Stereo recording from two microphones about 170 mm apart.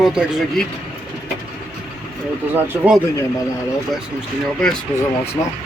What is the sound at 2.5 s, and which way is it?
Speech, 10° right (ahead or behind).